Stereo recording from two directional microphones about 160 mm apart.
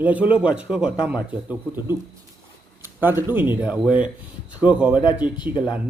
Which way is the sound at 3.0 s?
10° right (ahead or behind).